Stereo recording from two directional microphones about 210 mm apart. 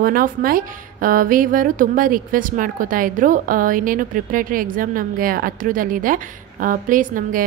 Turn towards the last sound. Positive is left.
turn(degrees=-40)  # may be behind; listen again after turning